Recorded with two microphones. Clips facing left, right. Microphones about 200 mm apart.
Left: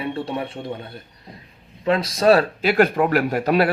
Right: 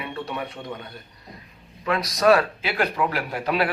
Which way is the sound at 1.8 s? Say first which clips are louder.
Left 3 dB; 25° left (ahead or behind).